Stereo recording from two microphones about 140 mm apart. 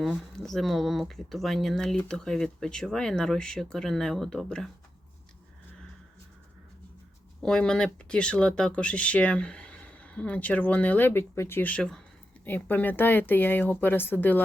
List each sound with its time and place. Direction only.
0.0 s speech: centre (ahead or behind)
7.4 s speech: 5° left (ahead or behind)